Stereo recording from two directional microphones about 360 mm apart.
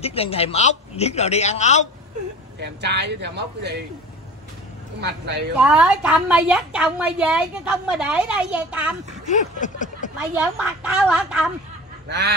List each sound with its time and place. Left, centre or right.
0.0 s a man's voice: centre
2.6 s speech: right
5.0 s speech: right
5.6 s a woman's voice: centre
9.3 s a sound: left
10.1 s a woman's voice: centre
12.1 s speech: right